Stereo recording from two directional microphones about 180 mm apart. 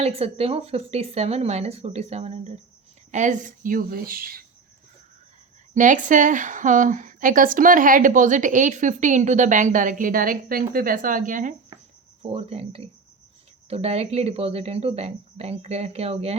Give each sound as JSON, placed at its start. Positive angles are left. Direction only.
{"t": 0.0, "sound": "a woman's voice", "side_deg": -35}
{"t": 5.7, "sound": "a woman's voice", "side_deg": -45}
{"t": 12.2, "sound": "speech", "side_deg": -35}